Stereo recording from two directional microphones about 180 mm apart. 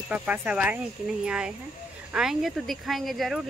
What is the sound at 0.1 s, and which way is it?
Speech, 5° right (ahead or behind).